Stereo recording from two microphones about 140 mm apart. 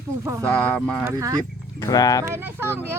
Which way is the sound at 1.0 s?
20° right (ahead or behind).